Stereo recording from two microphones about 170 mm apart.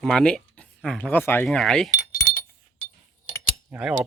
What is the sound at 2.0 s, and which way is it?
Keys jangling, 20° left (ahead or behind).